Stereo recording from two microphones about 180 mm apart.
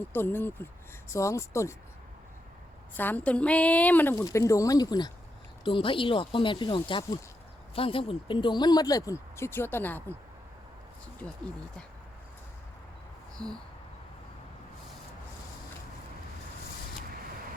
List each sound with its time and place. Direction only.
0.1 s speech: 10° left (ahead or behind)
2.9 s speech: 10° left (ahead or behind)
11.2 s speech: 5° left (ahead or behind)
13.4 s speech: 5° left (ahead or behind)